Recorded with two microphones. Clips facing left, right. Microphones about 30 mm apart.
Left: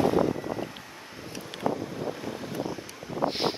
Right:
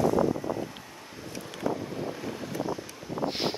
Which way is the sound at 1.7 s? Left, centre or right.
Centre.